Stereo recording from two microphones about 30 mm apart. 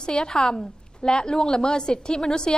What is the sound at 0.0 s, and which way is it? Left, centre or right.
A woman's voice, left.